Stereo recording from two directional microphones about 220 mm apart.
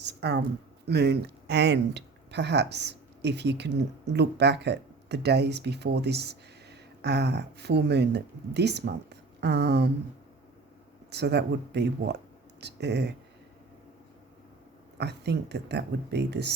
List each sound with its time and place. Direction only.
0.0 s a sound: 50° right (ahead or behind)
0.9 s speech: 50° right (ahead or behind)
11.1 s speech: 50° right (ahead or behind)
14.9 s speech: 50° right (ahead or behind)